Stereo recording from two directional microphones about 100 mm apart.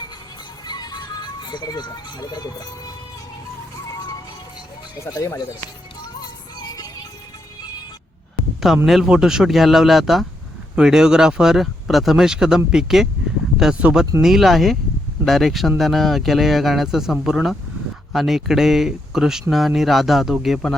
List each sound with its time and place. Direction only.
0.6 s speech: 45° left (ahead or behind)
6.6 s music: 40° left (ahead or behind)
8.6 s speech: 5° right (ahead or behind)